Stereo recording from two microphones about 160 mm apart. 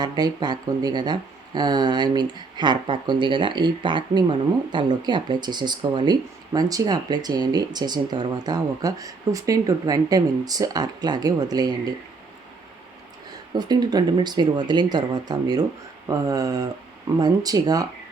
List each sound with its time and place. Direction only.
0.0 s speech: 25° right (ahead or behind)
13.5 s speech: 25° right (ahead or behind)